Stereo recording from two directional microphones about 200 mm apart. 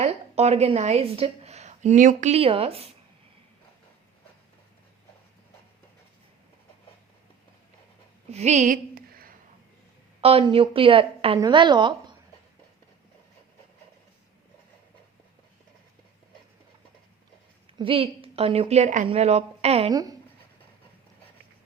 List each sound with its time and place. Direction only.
0.0 s a woman's voice: 30° right (ahead or behind)
8.3 s a woman's voice: 35° right (ahead or behind)
10.2 s a woman's voice: 30° right (ahead or behind)
17.7 s a woman's voice: 25° right (ahead or behind)
19.9 s a woman's voice: 20° right (ahead or behind)